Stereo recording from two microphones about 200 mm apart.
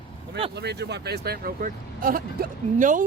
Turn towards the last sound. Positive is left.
turn(degrees=-40)  # may be behind; listen again after turning